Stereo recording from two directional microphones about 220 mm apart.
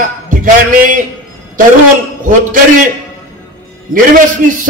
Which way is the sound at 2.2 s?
40° right (ahead or behind).